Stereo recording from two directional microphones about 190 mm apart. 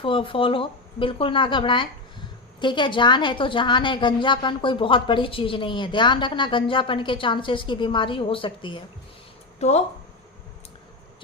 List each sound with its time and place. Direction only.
0.0 s a woman's voice: 30° left (ahead or behind)
9.6 s speech: 35° left (ahead or behind)